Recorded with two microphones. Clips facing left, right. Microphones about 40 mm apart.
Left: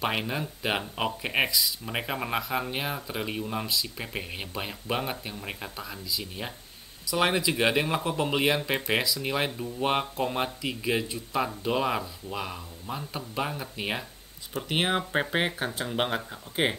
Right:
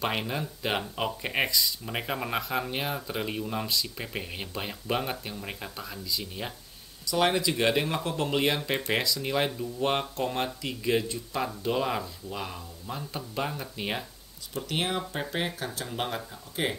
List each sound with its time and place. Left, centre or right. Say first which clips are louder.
0.0 s speech: left 1 dB; centre
7.1 s speech: even; centre
14.5 s speech: left 3 dB; left